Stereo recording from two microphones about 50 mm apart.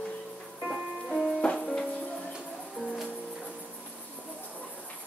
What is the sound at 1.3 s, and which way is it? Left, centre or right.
Music, centre.